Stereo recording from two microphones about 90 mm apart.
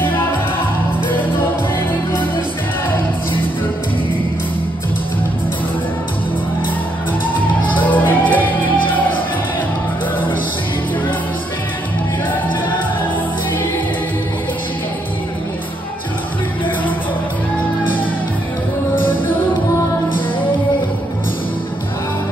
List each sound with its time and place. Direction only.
7.7 s music: 20° left (ahead or behind)